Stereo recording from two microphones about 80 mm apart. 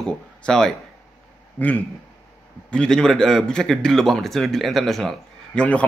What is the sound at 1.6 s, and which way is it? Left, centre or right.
A man's voice, centre.